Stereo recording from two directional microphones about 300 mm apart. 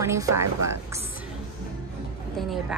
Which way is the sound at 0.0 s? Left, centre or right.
Centre.